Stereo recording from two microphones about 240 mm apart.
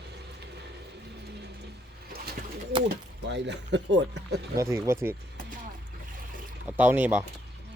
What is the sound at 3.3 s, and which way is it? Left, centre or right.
Speech, right.